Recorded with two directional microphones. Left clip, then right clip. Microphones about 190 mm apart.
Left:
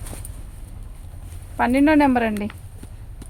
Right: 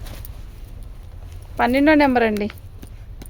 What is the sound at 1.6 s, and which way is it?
Speech, 60° right (ahead or behind).